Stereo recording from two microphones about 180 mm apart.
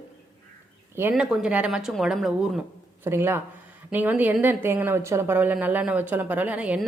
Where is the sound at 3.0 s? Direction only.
10° right (ahead or behind).